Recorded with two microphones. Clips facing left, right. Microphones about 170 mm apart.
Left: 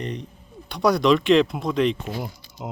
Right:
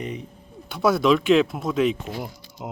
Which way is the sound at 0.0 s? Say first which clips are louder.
Left 1 dB; 5° right (ahead or behind).